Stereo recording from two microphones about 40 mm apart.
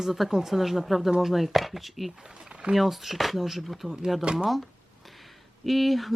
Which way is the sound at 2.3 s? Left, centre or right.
Right.